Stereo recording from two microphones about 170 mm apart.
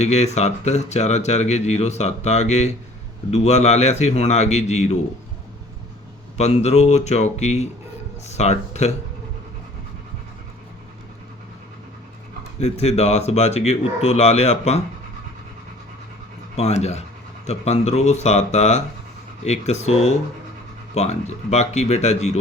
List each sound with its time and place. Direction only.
0.0 s speech: 40° left (ahead or behind)
6.3 s speech: 40° left (ahead or behind)
12.5 s speech: 40° left (ahead or behind)
16.6 s speech: 40° left (ahead or behind)